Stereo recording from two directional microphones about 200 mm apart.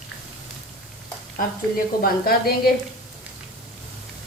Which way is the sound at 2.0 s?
50° left (ahead or behind).